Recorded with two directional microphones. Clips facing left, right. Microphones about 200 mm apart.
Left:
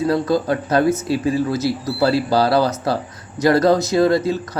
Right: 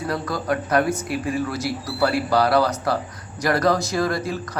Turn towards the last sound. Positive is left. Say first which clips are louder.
# left 7 dB
turn(degrees=25)  # may be behind; listen again after turning